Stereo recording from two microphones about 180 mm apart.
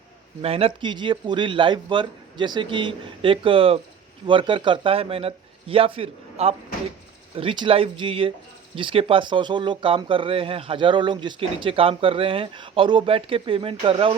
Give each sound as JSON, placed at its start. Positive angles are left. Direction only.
{"t": 0.4, "sound": "a man's voice", "side_deg": -35}